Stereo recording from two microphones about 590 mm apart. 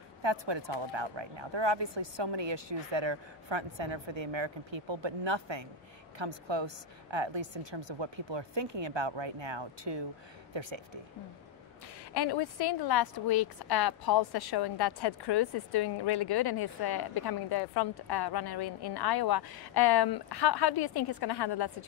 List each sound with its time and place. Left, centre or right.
0.2 s speech: right
12.1 s a woman's voice: left